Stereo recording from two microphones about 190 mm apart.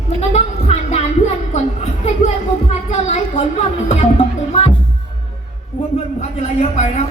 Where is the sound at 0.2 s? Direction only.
35° left (ahead or behind).